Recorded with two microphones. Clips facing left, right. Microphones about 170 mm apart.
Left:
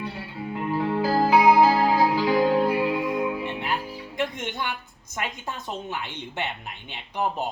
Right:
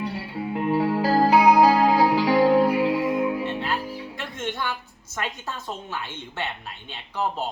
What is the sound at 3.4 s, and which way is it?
Music, 15° left (ahead or behind).